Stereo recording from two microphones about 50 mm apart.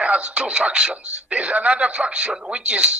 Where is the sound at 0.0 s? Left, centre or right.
Right.